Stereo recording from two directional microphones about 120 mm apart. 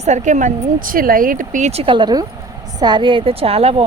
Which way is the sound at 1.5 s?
70° right (ahead or behind).